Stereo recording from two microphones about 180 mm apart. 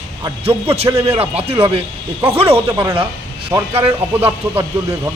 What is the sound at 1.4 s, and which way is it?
A man's voice, 35° right (ahead or behind).